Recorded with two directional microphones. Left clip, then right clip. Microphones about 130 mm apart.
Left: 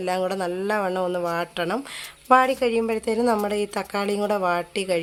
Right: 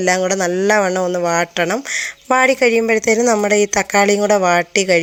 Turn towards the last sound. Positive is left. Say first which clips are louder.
# right 10 dB
turn(degrees=-35)  # may be behind; listen again after turning